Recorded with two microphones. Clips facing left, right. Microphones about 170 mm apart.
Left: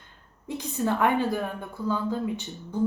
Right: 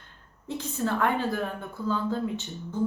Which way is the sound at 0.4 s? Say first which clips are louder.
Left 2 dB; 15° left (ahead or behind).